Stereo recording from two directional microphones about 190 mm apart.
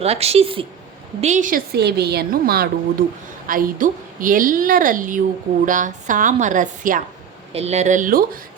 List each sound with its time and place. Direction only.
0.0 s speech: 35° right (ahead or behind)
1.2 s a woman's voice: 40° right (ahead or behind)